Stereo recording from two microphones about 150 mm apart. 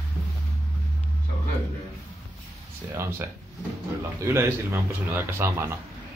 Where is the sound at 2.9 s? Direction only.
15° right (ahead or behind).